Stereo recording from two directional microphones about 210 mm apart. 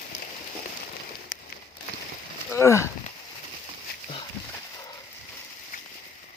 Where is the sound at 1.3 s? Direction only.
45° left (ahead or behind).